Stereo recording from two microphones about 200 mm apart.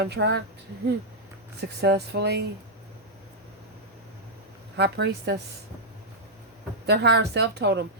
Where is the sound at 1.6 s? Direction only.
55° right (ahead or behind).